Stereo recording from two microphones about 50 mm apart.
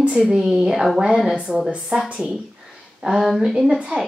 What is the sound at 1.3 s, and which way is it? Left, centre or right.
Speech, centre.